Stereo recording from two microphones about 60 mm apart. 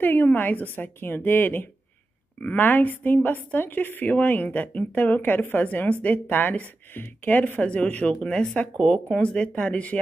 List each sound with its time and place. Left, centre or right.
0.0 s a woman's voice: left